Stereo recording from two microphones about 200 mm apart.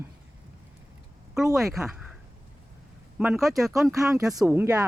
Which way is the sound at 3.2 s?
5° right (ahead or behind).